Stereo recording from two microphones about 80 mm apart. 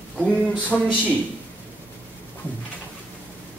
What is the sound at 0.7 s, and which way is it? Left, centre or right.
Speech, centre.